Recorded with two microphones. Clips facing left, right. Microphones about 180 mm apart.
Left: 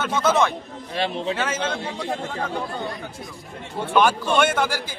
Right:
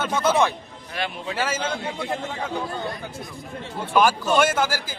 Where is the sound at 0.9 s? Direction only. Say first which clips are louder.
Left 5 dB; 25° left (ahead or behind).